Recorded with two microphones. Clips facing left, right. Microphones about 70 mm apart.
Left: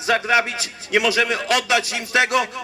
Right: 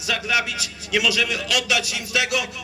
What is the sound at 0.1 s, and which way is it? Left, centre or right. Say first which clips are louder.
A man's voice: left 5 dB; left.